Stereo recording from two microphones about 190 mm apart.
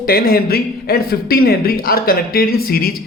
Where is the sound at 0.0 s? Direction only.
50° left (ahead or behind).